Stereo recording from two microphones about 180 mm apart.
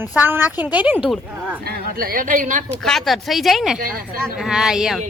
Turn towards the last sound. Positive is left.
turn(degrees=0)  # may be behind; listen again after turning